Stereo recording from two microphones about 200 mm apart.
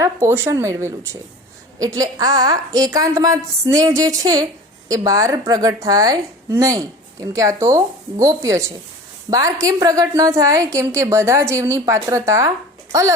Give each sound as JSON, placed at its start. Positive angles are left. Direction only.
{"t": 0.0, "sound": "a woman's voice", "side_deg": -15}